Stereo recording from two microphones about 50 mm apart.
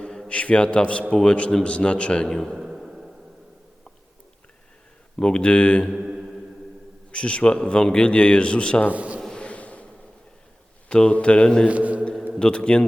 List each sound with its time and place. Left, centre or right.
0.3 s a man's voice: left
2.2 s a man's voice: centre
2.6 s a sound: centre
5.1 s a man's voice: centre
5.9 s mantra: centre
7.1 s a man's voice: left
8.9 s a man's voice: right
9.3 s a sound: left
10.8 s a man's voice: left
11.7 s a man's voice: right
12.4 s a man's voice: centre